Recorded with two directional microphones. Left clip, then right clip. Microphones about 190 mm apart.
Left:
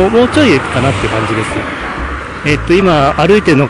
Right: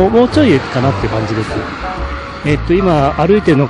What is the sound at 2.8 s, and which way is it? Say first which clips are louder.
Speech: left 3 dB; 5° right (ahead or behind).